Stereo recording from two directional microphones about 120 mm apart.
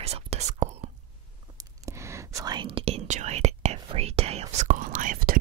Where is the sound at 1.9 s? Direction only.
25° right (ahead or behind); by 5.1 s 90° right.